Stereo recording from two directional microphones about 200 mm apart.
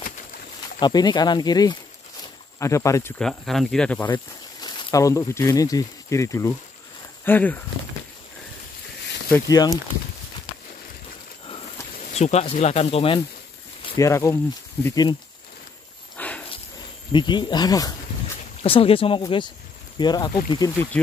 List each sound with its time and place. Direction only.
0.7 s speech: 20° left (ahead or behind); by 4.1 s 5° left (ahead or behind)
4.1 s speech: 20° left (ahead or behind)
9.3 s speech: 15° left (ahead or behind)
12.2 s speech: 35° left (ahead or behind)
13.9 s speech: 15° left (ahead or behind)
16.2 s a sound: 5° left (ahead or behind)
17.1 s speech: 25° left (ahead or behind)
20.9 s speech: 5° left (ahead or behind)